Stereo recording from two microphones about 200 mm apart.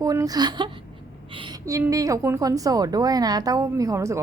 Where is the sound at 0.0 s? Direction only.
15° right (ahead or behind).